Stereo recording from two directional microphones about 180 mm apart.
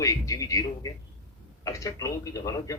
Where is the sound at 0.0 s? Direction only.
20° left (ahead or behind).